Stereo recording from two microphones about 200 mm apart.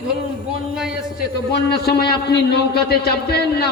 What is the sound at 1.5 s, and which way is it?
A man's voice, 55° left (ahead or behind).